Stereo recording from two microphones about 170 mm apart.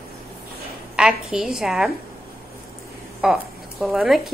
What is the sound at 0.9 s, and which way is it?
Speech, 5° right (ahead or behind).